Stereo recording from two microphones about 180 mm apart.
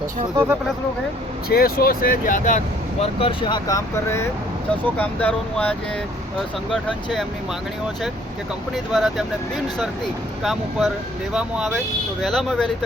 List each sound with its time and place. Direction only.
1.5 s speech: 55° left (ahead or behind)
3.0 s speech: 30° left (ahead or behind); by 7.3 s centre (ahead or behind)
8.7 s speech: centre (ahead or behind)
10.4 s speech: centre (ahead or behind)